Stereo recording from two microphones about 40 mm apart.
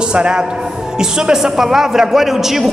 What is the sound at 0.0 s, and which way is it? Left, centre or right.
A man's voice, right.